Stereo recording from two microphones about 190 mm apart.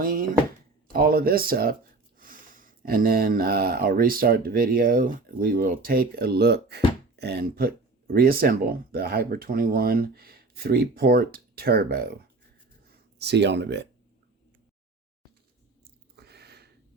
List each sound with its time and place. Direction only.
0.0 s speech: 50° right (ahead or behind)
13.1 s speech: 60° right (ahead or behind)
16.1 s a sound: 60° right (ahead or behind)